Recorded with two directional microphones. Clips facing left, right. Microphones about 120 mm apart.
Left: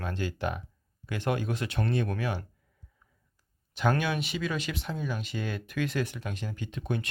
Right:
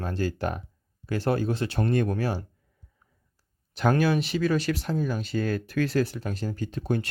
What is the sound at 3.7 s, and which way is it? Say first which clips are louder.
Speech: right 5 dB; 40° right (ahead or behind).